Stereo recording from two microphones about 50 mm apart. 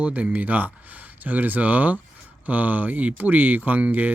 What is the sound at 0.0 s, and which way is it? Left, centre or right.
Speech, right.